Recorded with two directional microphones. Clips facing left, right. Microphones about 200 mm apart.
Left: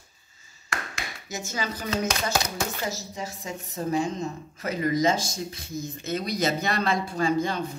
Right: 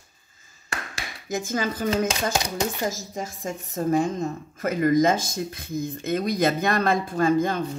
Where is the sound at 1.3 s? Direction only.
50° right (ahead or behind).